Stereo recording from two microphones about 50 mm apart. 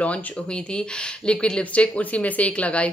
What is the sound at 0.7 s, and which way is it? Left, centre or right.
Speech, centre.